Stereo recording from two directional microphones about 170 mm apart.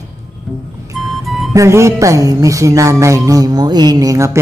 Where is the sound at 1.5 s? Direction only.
15° right (ahead or behind).